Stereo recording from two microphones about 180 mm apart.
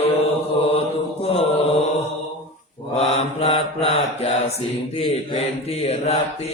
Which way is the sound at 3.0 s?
35° left (ahead or behind).